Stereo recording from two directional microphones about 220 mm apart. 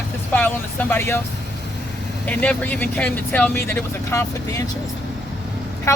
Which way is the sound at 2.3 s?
5° left (ahead or behind).